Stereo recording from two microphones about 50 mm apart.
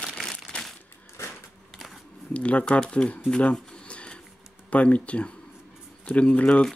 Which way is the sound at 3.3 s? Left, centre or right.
Left.